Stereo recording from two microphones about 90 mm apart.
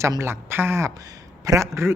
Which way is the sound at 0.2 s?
25° right (ahead or behind).